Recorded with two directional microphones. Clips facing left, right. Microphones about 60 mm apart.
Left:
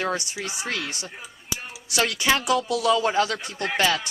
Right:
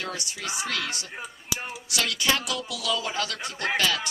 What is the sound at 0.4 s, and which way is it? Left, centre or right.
Speech, left.